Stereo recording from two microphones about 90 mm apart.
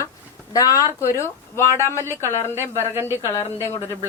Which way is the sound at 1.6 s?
30° left (ahead or behind).